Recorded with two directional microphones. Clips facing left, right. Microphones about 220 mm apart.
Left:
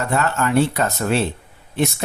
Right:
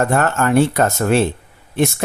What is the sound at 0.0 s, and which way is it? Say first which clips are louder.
Speech: right 4 dB; 50° right (ahead or behind).